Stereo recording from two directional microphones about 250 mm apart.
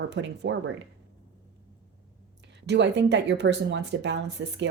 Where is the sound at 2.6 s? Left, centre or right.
Right.